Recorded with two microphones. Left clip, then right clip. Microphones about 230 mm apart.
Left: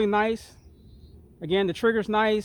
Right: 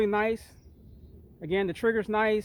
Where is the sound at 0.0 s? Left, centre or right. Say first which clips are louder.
Left 3 dB; left.